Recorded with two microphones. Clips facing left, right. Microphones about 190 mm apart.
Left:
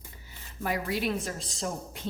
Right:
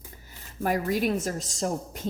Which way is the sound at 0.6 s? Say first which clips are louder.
Right 5 dB; 45° right (ahead or behind).